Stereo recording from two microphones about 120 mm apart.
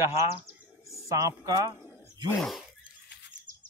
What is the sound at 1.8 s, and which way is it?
Wild animals, 20° left (ahead or behind).